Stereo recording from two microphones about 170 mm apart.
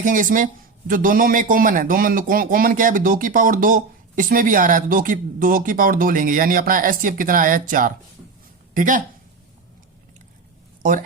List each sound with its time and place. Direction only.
0.0 s a man's voice: 50° right (ahead or behind)